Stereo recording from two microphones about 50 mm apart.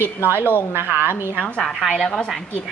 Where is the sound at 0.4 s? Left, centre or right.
Left.